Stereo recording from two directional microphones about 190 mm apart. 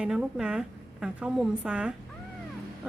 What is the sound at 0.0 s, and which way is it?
A woman's voice, 5° right (ahead or behind).